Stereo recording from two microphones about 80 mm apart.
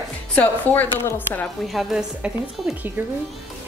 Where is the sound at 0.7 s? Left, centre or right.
Left.